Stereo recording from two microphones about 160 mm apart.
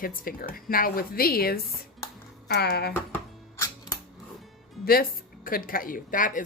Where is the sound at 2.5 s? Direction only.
90° left.